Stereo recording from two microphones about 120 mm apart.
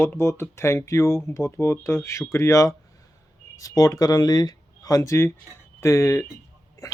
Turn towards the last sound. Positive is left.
turn(degrees=25)  # may be behind; listen again after turning